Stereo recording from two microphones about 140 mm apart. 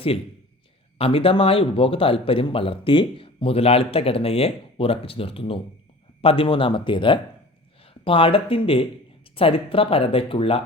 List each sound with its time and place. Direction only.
0.9 s speech: 40° left (ahead or behind)